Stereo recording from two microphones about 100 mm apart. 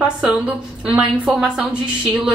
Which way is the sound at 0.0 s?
5° right (ahead or behind).